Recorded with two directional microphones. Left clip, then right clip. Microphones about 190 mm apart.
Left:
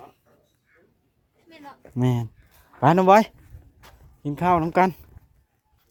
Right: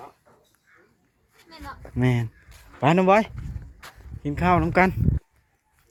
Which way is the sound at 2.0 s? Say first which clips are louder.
Right 1 dB; 15° left (ahead or behind).